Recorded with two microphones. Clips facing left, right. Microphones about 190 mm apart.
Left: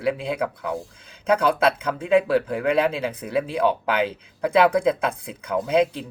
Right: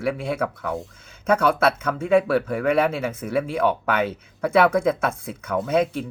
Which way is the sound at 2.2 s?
15° left (ahead or behind).